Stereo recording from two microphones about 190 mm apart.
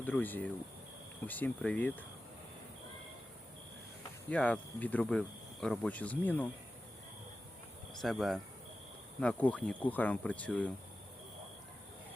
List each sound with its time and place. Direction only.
0.0 s speech: 10° left (ahead or behind)
4.3 s speech: 5° left (ahead or behind)
8.0 s speech: centre (ahead or behind)